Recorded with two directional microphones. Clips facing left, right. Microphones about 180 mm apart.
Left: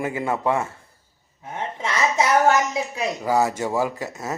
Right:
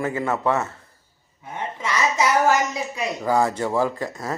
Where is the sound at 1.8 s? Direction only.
25° left (ahead or behind).